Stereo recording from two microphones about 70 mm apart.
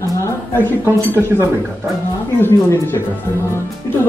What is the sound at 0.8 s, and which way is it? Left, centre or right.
Speech, right.